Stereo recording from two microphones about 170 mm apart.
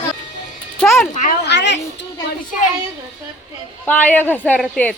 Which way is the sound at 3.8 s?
10° left (ahead or behind).